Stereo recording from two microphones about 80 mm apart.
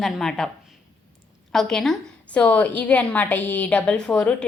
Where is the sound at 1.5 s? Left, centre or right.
Centre.